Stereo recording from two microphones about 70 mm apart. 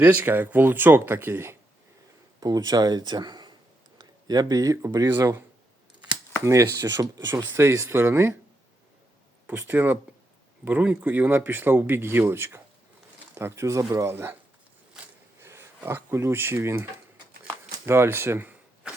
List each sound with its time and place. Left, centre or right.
0.0 s speech: right
2.4 s speech: right
3.9 s speech: right
6.4 s speech: right
7.4 s speech: right
9.5 s speech: right
14.1 s speech: right
15.0 s a sound: centre
15.4 s a sound: right
16.6 s speech: right
17.4 s shuffling cards: right
18.4 s a sound: centre